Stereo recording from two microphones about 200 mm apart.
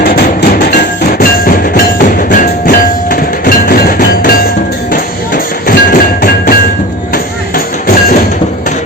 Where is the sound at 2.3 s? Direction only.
45° left (ahead or behind).